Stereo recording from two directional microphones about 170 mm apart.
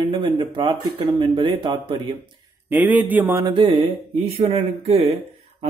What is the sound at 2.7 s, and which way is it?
Speech, 10° right (ahead or behind).